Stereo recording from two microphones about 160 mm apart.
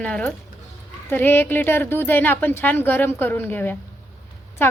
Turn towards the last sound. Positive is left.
turn(degrees=15)  # may be behind; listen again after turning